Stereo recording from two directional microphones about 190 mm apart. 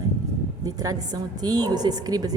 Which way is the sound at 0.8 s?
20° right (ahead or behind).